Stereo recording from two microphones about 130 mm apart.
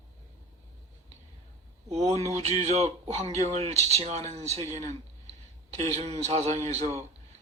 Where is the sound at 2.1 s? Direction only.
55° right (ahead or behind).